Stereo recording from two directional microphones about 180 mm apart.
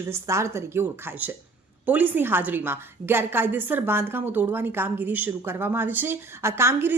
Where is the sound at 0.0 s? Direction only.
15° right (ahead or behind).